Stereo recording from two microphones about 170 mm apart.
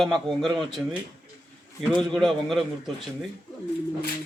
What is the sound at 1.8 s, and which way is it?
A man's voice, 5° left (ahead or behind).